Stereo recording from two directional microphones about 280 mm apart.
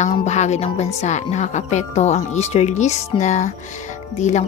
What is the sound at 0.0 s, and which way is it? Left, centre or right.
Speech, left.